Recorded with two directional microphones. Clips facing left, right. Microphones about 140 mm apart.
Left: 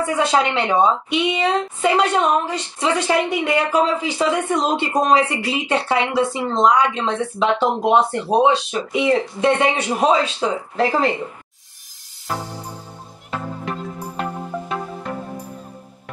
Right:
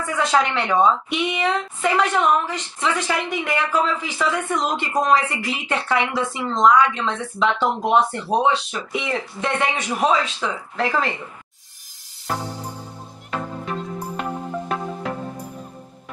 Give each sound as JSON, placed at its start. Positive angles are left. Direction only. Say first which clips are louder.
{"t": 0.0, "sound": "a woman's voice", "louder": "left 2 dB", "side_deg": 25}
{"t": 13.3, "sound": "music", "louder": "even", "side_deg": 0}